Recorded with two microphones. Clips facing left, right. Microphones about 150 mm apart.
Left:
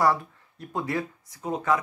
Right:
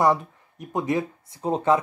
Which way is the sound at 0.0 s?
20° right (ahead or behind).